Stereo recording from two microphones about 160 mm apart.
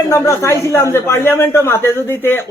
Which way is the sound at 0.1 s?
20° left (ahead or behind).